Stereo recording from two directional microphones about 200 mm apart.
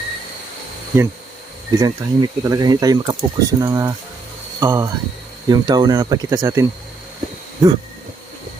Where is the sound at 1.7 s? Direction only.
15° right (ahead or behind).